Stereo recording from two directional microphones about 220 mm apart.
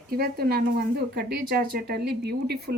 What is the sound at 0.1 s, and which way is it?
Speech, 45° right (ahead or behind).